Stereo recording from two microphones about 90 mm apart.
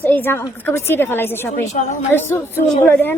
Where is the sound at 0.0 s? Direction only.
20° left (ahead or behind).